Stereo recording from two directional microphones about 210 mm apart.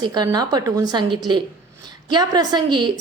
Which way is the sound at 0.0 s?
20° right (ahead or behind).